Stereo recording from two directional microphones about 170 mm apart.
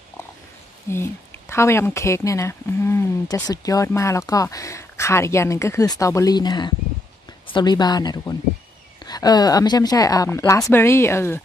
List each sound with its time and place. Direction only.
0.9 s a woman's voice: 15° left (ahead or behind)